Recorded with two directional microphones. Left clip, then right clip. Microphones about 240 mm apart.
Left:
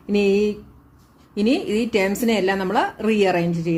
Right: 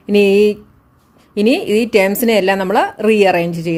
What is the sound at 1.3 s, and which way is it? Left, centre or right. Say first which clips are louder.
A woman's voice: right 7 dB; right.